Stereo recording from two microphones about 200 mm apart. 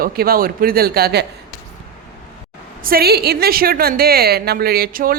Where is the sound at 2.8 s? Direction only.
50° right (ahead or behind).